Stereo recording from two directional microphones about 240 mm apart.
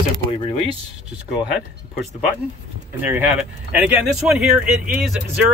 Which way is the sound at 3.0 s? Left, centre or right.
Centre.